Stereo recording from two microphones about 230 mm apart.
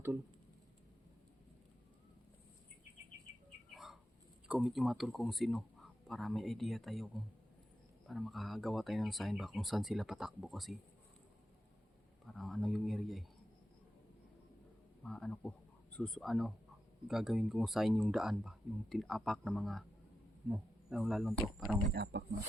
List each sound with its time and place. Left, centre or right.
4.4 s speech: centre
12.2 s speech: centre
15.0 s speech: centre
21.8 s speech: right